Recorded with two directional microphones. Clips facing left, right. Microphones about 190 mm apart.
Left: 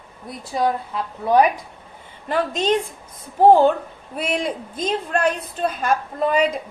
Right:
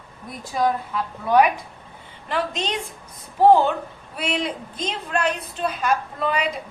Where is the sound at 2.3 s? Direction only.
45° left (ahead or behind).